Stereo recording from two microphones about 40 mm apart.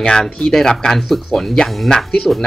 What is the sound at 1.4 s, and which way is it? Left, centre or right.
Speech, centre.